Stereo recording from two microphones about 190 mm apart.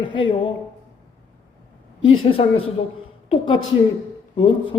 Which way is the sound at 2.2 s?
30° left (ahead or behind).